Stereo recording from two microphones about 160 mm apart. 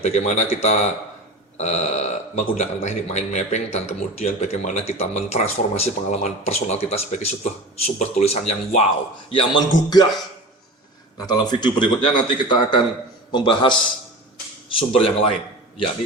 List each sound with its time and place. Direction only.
0.0 s a man's voice: 45° left (ahead or behind)
9.3 s speech: 30° left (ahead or behind)
11.2 s a man's voice: 25° left (ahead or behind)
14.8 s a man's voice: 35° left (ahead or behind)